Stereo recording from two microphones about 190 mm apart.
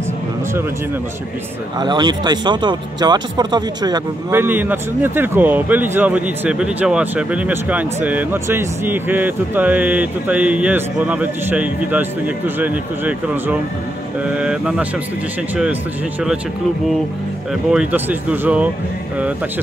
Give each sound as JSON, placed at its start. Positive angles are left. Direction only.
{"t": 1.8, "sound": "speech", "side_deg": -20}
{"t": 17.6, "sound": "speech", "side_deg": -5}